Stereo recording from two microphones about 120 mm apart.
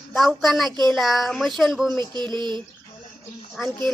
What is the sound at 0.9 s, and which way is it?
Speech, centre (ahead or behind).